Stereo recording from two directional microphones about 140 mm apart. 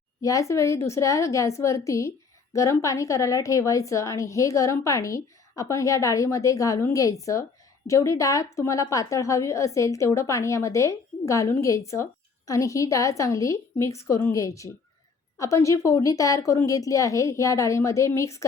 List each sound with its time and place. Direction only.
0.2 s a woman's voice: 25° left (ahead or behind)